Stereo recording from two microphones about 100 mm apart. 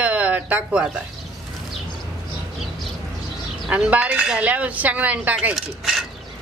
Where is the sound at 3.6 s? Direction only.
15° right (ahead or behind).